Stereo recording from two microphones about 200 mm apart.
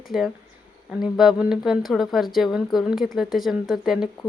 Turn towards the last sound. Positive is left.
turn(degrees=0)  # may be behind; listen again after turning